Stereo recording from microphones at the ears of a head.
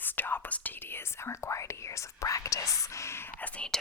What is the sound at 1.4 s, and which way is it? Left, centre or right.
Speech, left.